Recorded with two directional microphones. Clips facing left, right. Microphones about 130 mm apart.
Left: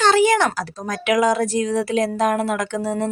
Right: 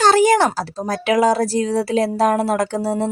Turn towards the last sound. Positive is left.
turn(degrees=-35)  # may be behind; listen again after turning